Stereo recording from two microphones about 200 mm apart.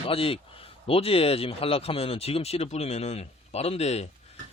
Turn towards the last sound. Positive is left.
turn(degrees=30)  # may be behind; listen again after turning